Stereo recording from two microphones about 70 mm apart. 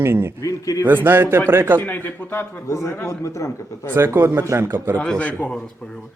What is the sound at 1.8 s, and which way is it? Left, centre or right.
Speech, left.